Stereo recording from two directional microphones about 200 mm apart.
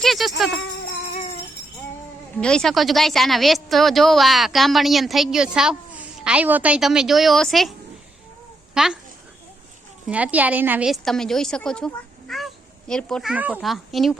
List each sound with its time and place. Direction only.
0.0 s a woman's voice: centre (ahead or behind)
1.0 s music: 30° left (ahead or behind)
2.3 s a woman's voice: 5° left (ahead or behind)
8.7 s a child's voice: 5° right (ahead or behind)
10.1 s a woman's voice: 5° right (ahead or behind)